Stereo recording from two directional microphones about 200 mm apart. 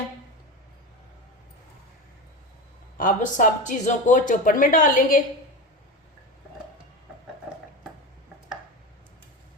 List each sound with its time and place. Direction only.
3.0 s speech: 40° left (ahead or behind)